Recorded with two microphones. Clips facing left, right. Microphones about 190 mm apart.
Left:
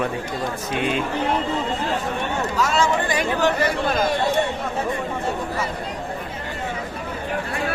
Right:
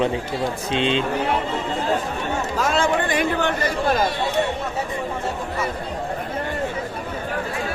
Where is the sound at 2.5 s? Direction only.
55° right (ahead or behind).